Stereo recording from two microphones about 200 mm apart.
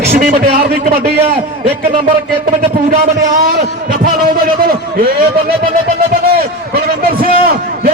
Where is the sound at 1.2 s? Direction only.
30° right (ahead or behind).